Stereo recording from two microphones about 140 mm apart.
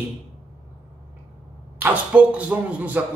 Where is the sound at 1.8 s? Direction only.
10° right (ahead or behind).